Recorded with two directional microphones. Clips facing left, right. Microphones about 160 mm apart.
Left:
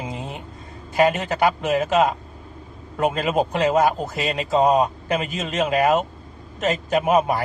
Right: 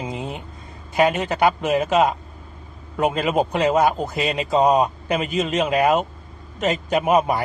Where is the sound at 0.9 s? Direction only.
Centre (ahead or behind).